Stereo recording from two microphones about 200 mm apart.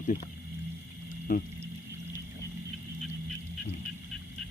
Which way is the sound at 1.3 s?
45° left (ahead or behind).